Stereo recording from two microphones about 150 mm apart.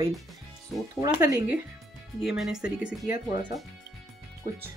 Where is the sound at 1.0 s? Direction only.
20° right (ahead or behind).